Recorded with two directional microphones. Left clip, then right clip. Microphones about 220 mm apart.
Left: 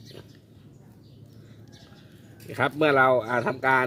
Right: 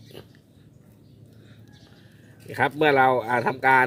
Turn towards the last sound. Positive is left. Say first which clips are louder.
# right 4 dB
turn(degrees=-20)  # may be behind; listen again after turning